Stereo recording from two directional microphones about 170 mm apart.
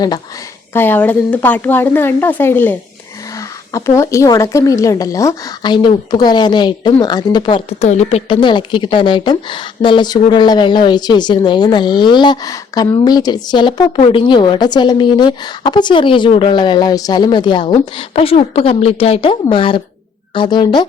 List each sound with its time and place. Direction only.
0.7 s a woman's voice: 10° left (ahead or behind); by 20.8 s 25° left (ahead or behind)